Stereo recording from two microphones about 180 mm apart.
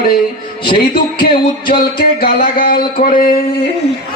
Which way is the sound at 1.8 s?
55° left (ahead or behind).